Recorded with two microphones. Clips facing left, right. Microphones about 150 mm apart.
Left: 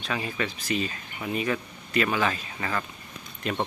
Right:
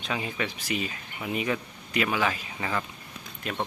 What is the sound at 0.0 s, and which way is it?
Speech, 20° right (ahead or behind).